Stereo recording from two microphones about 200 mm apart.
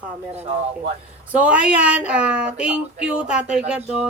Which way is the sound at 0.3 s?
30° right (ahead or behind).